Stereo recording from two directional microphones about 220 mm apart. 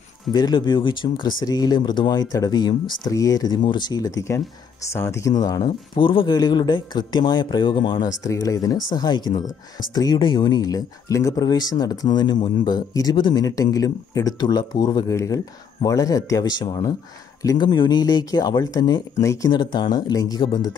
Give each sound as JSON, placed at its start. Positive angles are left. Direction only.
{"t": 0.3, "sound": "speech", "side_deg": 20}